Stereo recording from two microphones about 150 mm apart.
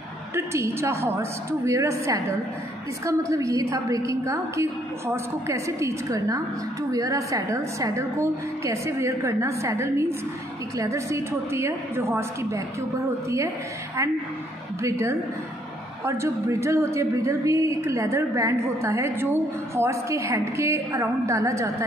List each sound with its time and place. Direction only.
0.3 s a woman's voice: 20° right (ahead or behind)
14.8 s a woman's voice: 20° right (ahead or behind)